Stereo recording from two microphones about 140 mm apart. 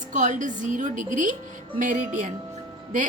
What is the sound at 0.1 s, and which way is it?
A woman's voice, 65° right (ahead or behind).